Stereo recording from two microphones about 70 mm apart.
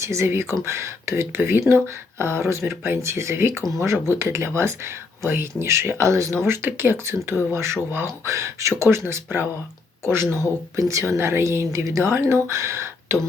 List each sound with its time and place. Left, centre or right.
0.0 s speech: right
6.4 s speech: right
10.8 s speech: right
11.1 s speech: right